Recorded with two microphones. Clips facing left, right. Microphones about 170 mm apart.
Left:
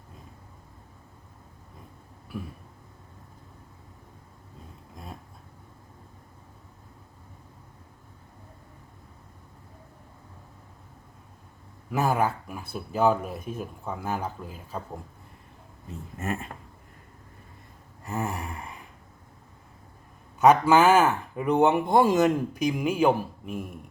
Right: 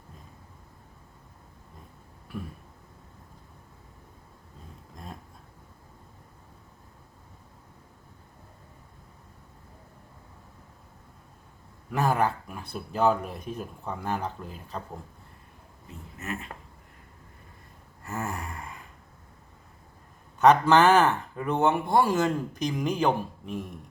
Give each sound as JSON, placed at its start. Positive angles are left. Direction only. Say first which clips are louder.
{"t": 11.9, "sound": "speech", "louder": "left 1 dB", "side_deg": 5}
{"t": 16.2, "sound": "speech", "louder": "left 4 dB", "side_deg": 45}
{"t": 18.0, "sound": "gasp", "louder": "left 2 dB", "side_deg": 15}
{"t": 20.4, "sound": "speech", "louder": "left 1 dB", "side_deg": 10}